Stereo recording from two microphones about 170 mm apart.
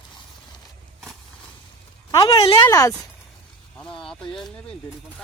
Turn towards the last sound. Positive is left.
turn(degrees=5)  # may be behind; listen again after turning